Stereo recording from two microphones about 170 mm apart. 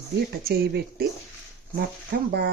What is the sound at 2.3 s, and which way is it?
Speech, 65° right (ahead or behind).